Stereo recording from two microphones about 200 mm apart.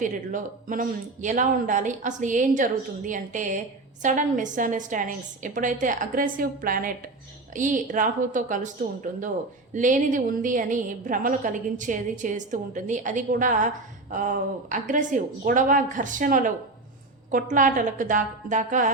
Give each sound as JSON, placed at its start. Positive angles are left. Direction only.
{"t": 0.0, "sound": "a woman's voice", "side_deg": -40}